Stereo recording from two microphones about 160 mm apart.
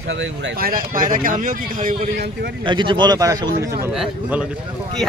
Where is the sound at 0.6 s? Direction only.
65° right (ahead or behind).